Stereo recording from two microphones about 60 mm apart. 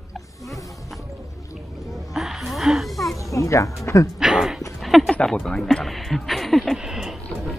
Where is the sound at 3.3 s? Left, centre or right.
Left.